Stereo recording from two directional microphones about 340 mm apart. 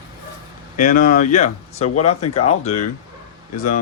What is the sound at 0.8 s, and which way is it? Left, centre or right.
Speech, left.